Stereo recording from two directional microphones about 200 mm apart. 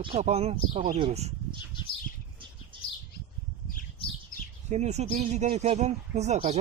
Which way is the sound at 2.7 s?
25° right (ahead or behind).